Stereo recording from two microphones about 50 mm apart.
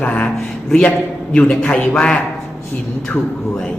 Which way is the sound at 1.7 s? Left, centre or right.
Centre.